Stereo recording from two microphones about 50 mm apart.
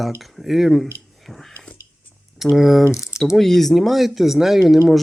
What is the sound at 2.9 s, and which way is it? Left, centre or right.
Speech, left.